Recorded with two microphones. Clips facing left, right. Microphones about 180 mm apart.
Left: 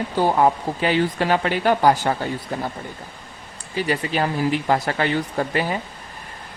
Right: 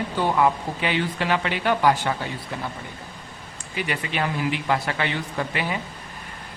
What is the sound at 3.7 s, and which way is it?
Speech, 35° left (ahead or behind).